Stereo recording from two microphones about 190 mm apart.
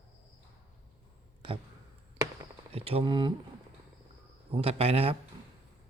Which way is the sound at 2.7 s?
30° right (ahead or behind).